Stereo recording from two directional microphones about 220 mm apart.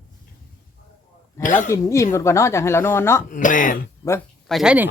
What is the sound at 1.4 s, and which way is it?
Speech, 35° left (ahead or behind).